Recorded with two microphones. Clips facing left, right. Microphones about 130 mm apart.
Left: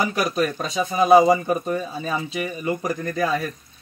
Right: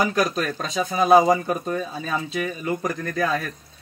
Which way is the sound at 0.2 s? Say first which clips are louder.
Left 1 dB; 10° left (ahead or behind).